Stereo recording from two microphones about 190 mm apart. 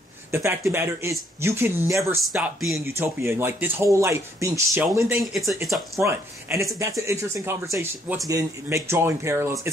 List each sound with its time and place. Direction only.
0.3 s speech: 15° right (ahead or behind)
5.2 s speech: centre (ahead or behind)
5.9 s speech: 15° right (ahead or behind)